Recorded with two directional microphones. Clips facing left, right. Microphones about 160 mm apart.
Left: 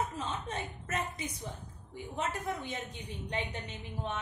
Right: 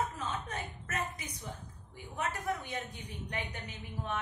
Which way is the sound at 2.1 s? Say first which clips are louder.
Even; 20° left (ahead or behind).